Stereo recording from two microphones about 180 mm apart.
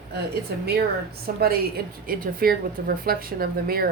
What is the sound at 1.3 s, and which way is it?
A woman's voice, 55° right (ahead or behind).